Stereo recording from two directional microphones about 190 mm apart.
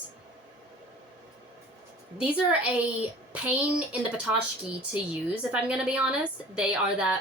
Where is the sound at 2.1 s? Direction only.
5° right (ahead or behind).